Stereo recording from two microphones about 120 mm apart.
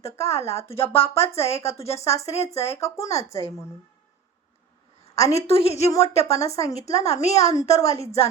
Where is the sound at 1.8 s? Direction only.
60° left (ahead or behind).